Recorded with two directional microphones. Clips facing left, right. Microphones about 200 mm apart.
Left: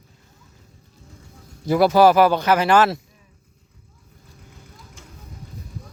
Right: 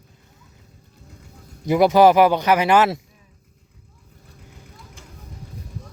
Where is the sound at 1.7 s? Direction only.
20° right (ahead or behind).